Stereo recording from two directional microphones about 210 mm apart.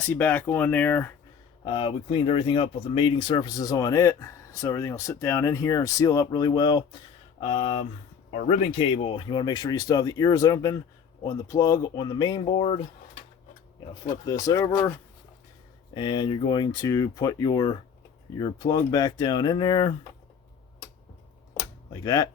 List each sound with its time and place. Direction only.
0.0 s speech: 10° left (ahead or behind)
1.6 s speech: 25° left (ahead or behind)
14.3 s speech: 15° left (ahead or behind)
16.0 s speech: 20° left (ahead or behind)
22.0 s speech: 15° left (ahead or behind)